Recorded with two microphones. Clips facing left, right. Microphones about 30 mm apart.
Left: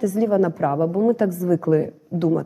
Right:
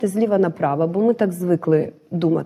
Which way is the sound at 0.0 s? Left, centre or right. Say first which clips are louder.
Right 1 dB; right.